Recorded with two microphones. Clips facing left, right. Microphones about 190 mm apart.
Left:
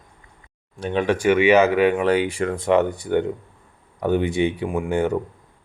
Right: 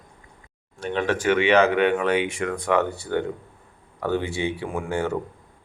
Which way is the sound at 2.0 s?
35° left (ahead or behind).